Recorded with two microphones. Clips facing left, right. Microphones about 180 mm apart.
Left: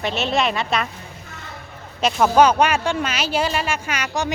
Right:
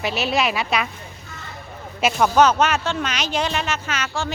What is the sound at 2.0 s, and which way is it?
Speech, 5° right (ahead or behind).